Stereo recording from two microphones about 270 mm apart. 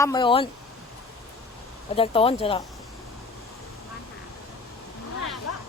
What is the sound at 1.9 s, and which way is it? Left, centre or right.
Speech, left.